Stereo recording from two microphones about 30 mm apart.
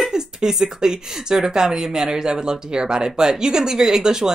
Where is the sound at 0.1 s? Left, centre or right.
Centre.